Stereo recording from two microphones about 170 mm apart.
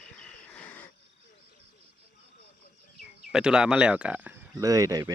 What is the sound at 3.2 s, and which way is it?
Speech, 5° right (ahead or behind).